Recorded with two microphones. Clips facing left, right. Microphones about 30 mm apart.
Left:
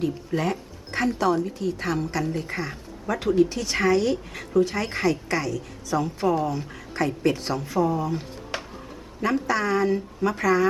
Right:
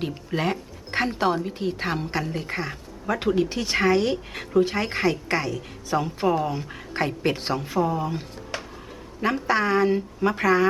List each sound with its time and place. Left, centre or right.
0.3 s speech: right
9.5 s speech: right